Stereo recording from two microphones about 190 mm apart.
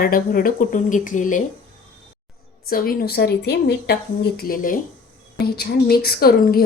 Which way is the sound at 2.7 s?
50° left (ahead or behind).